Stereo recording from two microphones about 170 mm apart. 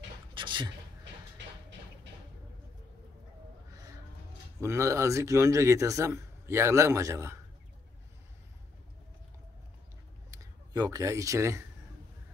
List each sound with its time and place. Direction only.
0.3 s a sound: 30° right (ahead or behind)
4.6 s speech: 15° right (ahead or behind)
10.3 s speech: 20° right (ahead or behind)